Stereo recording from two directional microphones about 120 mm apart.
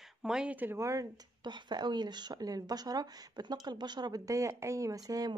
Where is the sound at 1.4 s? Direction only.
40° right (ahead or behind).